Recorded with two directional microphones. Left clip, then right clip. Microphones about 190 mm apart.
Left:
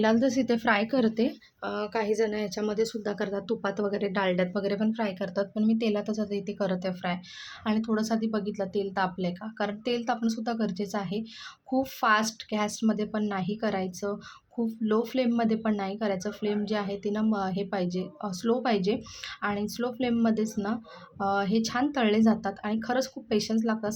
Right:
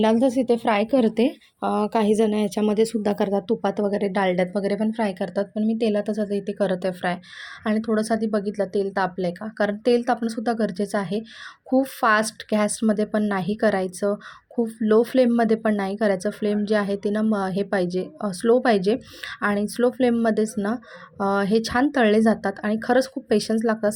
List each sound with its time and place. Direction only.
0.0 s speech: 25° right (ahead or behind)